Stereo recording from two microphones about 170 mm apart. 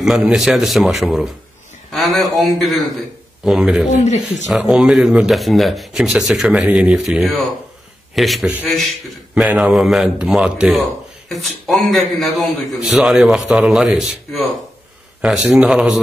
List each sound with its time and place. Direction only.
0.0 s a man's voice: centre (ahead or behind)
3.9 s speech: 45° left (ahead or behind)
4.5 s a man's voice: centre (ahead or behind)